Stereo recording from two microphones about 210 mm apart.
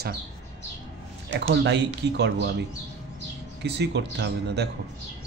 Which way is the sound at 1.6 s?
55° right (ahead or behind).